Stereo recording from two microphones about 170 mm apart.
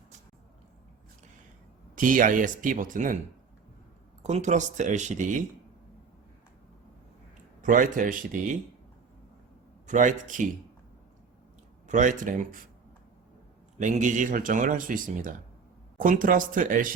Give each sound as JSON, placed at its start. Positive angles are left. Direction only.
{"t": 2.0, "sound": "speech", "side_deg": -50}
{"t": 4.2, "sound": "speech", "side_deg": -45}
{"t": 7.6, "sound": "speech", "side_deg": -50}
{"t": 9.8, "sound": "speech", "side_deg": -45}
{"t": 11.9, "sound": "speech", "side_deg": -45}
{"t": 13.7, "sound": "speech", "side_deg": -45}